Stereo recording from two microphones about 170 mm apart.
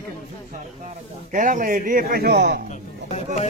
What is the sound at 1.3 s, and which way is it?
A man's voice, 50° right (ahead or behind).